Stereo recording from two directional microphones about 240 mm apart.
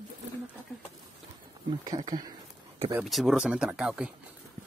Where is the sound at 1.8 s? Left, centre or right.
Centre.